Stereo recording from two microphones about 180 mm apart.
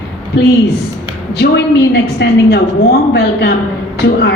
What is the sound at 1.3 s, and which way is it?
A woman's voice, 70° left (ahead or behind).